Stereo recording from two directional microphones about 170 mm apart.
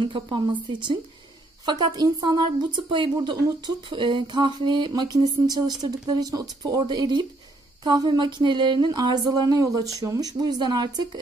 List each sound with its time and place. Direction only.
0.0 s speech: 30° right (ahead or behind)